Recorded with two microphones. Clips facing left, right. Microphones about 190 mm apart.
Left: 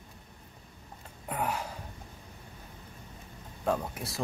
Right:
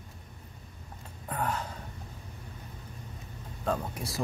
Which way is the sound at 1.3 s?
10° left (ahead or behind).